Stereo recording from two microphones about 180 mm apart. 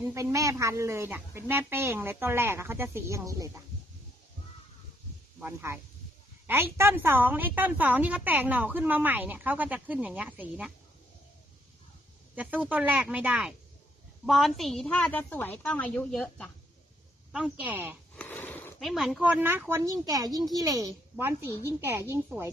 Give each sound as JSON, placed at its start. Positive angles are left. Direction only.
{"t": 0.0, "sound": "a woman's voice", "side_deg": -15}
{"t": 5.4, "sound": "a woman's voice", "side_deg": -15}
{"t": 12.4, "sound": "a woman's voice", "side_deg": -10}
{"t": 18.1, "sound": "a sound", "side_deg": 10}
{"t": 18.8, "sound": "a woman's voice", "side_deg": 0}